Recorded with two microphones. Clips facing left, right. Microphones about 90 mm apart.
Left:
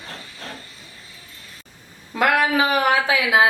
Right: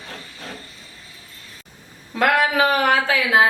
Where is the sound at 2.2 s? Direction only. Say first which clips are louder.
Right 1 dB; 15° left (ahead or behind).